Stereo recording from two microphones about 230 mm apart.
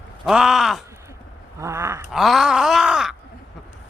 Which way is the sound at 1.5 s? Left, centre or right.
Centre.